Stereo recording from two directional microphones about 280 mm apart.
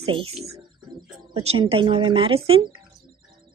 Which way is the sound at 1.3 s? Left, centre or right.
Right.